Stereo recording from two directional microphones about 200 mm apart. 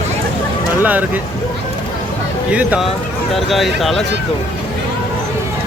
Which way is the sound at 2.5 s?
5° right (ahead or behind).